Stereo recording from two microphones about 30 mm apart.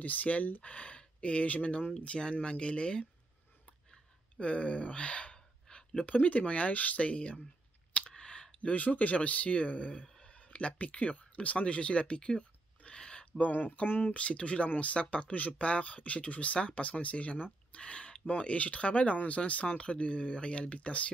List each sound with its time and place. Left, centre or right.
0.0 s speech: left
0.6 s speech: left
2.4 s speech: left
4.4 s gasp: left
6.0 s speech: left
8.1 s clicking: left
8.5 s speech: left
10.2 s a sound: left
13.5 s speech: left
14.1 s speech: left